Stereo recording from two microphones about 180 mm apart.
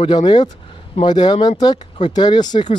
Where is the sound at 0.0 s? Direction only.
25° left (ahead or behind).